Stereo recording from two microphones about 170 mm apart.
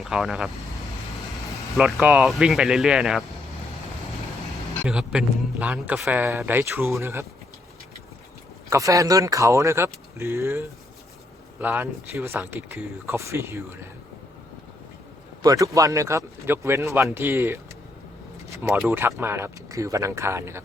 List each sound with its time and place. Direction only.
0.0 s speech: 5° right (ahead or behind)
1.7 s speech: centre (ahead or behind)
4.9 s a man's voice: 5° right (ahead or behind)
8.7 s a man's voice: 20° right (ahead or behind)
11.6 s a man's voice: 10° right (ahead or behind)
15.4 s a man's voice: 20° right (ahead or behind)
18.7 s a man's voice: 10° right (ahead or behind)